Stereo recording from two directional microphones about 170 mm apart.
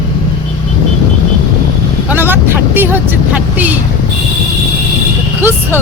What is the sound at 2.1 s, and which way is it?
Speech, 10° right (ahead or behind).